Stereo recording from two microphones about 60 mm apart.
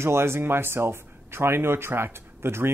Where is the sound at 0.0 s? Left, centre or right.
Right.